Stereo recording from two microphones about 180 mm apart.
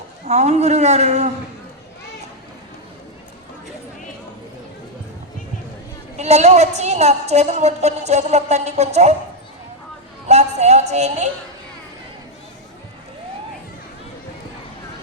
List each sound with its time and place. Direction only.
0.3 s a woman's voice: 40° right (ahead or behind)
6.1 s a woman's voice: 40° right (ahead or behind)
10.2 s a sound: 40° right (ahead or behind)